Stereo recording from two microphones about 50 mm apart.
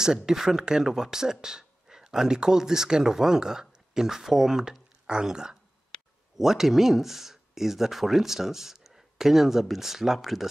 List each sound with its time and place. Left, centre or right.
0.0 s speech: centre